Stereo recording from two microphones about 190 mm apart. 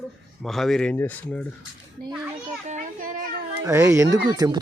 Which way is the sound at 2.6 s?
40° right (ahead or behind).